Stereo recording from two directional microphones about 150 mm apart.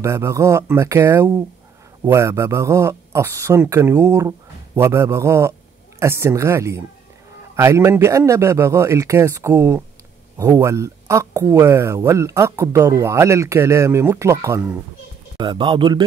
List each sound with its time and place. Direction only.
0.0 s speech: 20° right (ahead or behind)
15.3 s a man's voice: 35° right (ahead or behind)